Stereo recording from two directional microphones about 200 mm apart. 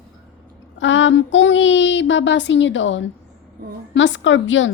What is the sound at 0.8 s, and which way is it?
Child singing, 70° left (ahead or behind).